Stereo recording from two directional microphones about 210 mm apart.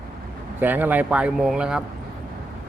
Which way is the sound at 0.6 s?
10° right (ahead or behind).